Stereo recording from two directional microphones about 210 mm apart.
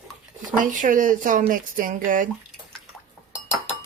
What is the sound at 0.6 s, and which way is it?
Speech, 40° right (ahead or behind).